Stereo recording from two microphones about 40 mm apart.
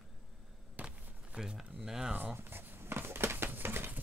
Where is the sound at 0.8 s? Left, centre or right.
Right.